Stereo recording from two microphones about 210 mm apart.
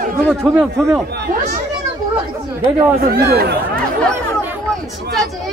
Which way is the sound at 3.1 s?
50° right (ahead or behind).